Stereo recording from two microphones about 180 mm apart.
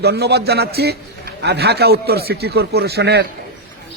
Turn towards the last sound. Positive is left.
turn(degrees=-65)  # may be behind; listen again after turning